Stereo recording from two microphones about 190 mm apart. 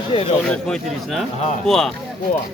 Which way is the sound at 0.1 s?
30° left (ahead or behind).